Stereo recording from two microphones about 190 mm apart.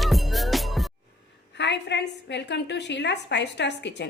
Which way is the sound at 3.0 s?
65° left (ahead or behind).